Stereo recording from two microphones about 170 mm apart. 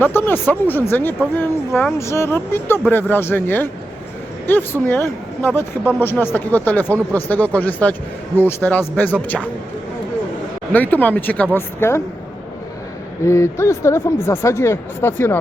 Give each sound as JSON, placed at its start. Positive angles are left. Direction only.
{"t": 0.0, "sound": "speech", "side_deg": 10}
{"t": 10.7, "sound": "speech", "side_deg": 10}
{"t": 13.2, "sound": "speech", "side_deg": 15}